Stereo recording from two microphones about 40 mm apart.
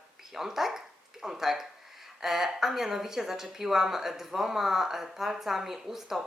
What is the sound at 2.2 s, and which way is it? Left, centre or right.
A woman's voice, centre.